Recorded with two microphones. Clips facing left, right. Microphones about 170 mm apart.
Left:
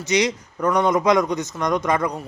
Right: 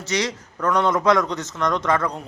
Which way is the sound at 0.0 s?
15° left (ahead or behind).